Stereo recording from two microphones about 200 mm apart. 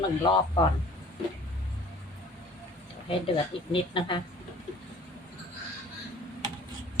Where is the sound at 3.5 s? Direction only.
25° left (ahead or behind).